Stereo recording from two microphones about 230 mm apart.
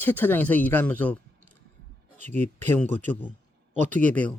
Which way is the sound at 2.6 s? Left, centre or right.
Centre.